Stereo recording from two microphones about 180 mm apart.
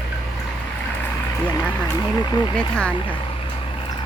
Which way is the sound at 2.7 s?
5° left (ahead or behind).